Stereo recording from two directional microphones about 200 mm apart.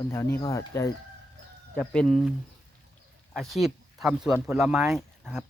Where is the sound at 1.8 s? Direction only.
5° left (ahead or behind).